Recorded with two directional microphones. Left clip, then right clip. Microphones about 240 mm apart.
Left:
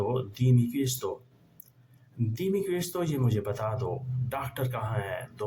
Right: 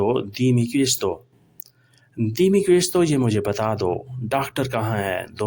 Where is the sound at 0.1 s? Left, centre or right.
Right.